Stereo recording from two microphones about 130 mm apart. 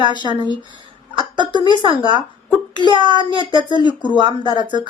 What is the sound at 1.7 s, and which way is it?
Child singing, 40° right (ahead or behind).